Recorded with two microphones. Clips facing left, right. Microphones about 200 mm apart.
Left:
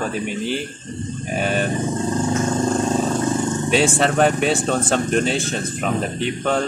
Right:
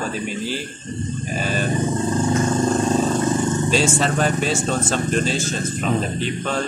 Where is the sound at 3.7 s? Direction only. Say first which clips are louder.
Left 6 dB; 60° left (ahead or behind).